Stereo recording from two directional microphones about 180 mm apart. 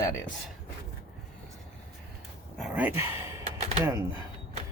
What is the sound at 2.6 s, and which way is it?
Speech, 5° right (ahead or behind).